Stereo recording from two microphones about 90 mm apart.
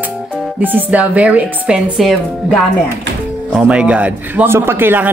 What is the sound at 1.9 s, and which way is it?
Speech, centre (ahead or behind).